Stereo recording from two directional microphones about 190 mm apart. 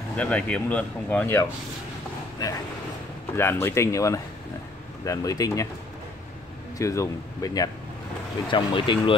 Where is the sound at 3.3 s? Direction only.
10° left (ahead or behind).